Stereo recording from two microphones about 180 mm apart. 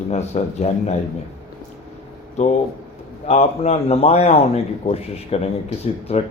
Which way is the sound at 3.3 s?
35° left (ahead or behind).